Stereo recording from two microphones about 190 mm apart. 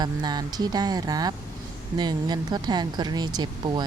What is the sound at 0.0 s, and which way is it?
Speech, 20° right (ahead or behind).